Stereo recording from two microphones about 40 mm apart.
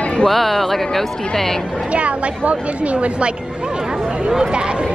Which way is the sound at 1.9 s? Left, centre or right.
Right.